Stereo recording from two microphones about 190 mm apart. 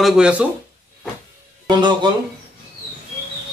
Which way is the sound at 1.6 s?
25° right (ahead or behind).